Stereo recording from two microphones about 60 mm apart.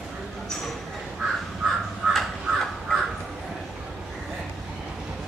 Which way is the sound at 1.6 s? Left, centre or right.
Centre.